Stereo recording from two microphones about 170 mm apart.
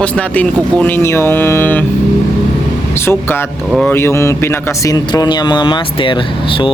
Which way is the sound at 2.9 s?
15° left (ahead or behind).